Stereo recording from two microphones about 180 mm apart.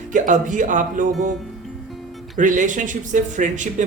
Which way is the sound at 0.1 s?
45° right (ahead or behind).